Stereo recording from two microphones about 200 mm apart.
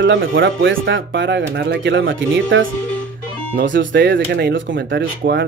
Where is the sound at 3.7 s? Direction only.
65° right (ahead or behind).